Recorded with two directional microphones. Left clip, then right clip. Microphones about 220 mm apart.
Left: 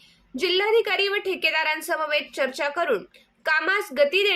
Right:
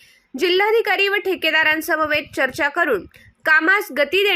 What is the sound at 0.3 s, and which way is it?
A woman's voice, 30° right (ahead or behind).